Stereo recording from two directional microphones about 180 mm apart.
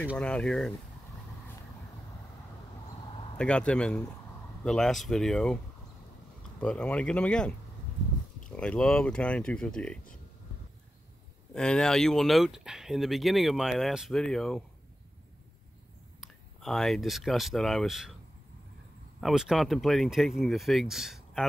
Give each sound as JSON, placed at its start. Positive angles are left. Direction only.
{"t": 0.2, "sound": "speech", "side_deg": 5}
{"t": 3.3, "sound": "speech", "side_deg": 5}
{"t": 6.6, "sound": "speech", "side_deg": 5}
{"t": 11.5, "sound": "speech", "side_deg": 5}
{"t": 16.2, "sound": "speech", "side_deg": 0}
{"t": 19.2, "sound": "speech", "side_deg": 0}